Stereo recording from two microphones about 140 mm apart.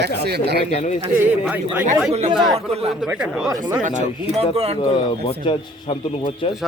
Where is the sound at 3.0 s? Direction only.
5° right (ahead or behind).